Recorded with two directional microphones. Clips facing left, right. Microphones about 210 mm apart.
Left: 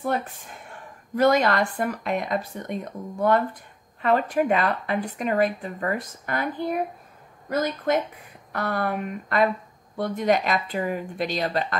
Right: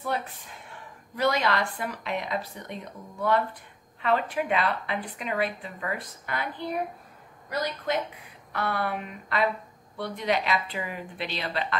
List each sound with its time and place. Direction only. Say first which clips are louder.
0.0 s a woman's voice: left 4 dB; 50° left (ahead or behind)